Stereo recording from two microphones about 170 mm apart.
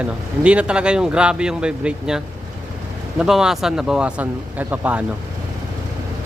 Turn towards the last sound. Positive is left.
turn(degrees=-10)  # may be behind; listen again after turning